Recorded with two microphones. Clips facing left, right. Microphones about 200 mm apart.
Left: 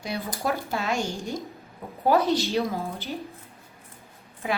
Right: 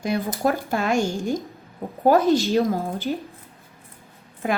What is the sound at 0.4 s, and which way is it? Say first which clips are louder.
A woman's voice: right 4 dB; 50° right (ahead or behind).